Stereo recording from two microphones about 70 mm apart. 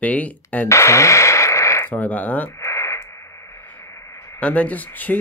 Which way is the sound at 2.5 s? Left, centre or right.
Left.